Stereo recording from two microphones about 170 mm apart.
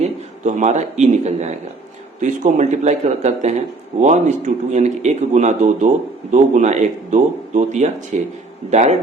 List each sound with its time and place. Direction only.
0.0 s a man's voice: 40° right (ahead or behind)